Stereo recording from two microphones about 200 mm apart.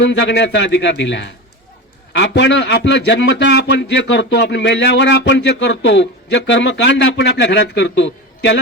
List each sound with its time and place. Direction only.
0.0 s a man's voice: 60° left (ahead or behind)